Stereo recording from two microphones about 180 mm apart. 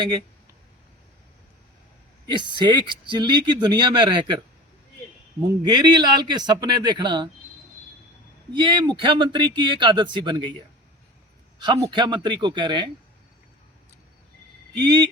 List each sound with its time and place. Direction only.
2.2 s speech: 25° right (ahead or behind)
5.6 s speech: 25° right (ahead or behind)
8.5 s speech: 25° right (ahead or behind)
11.6 s speech: 25° right (ahead or behind)
14.8 s speech: 25° right (ahead or behind)